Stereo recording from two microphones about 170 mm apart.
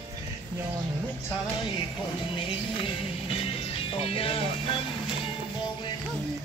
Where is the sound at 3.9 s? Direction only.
35° left (ahead or behind).